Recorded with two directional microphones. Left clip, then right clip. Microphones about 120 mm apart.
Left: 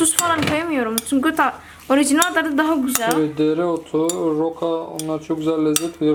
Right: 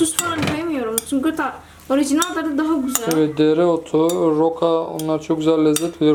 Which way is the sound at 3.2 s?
20° right (ahead or behind).